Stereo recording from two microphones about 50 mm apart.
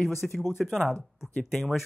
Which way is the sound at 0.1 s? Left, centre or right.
Centre.